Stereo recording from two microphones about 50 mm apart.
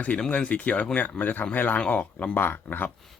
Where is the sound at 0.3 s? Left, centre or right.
Left.